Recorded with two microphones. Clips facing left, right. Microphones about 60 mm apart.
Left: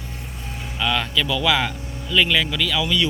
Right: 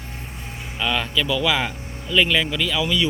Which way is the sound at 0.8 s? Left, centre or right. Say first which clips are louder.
Left 1 dB; centre.